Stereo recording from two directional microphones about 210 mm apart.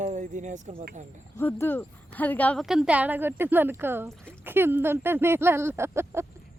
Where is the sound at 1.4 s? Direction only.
10° left (ahead or behind); by 6.2 s 10° right (ahead or behind).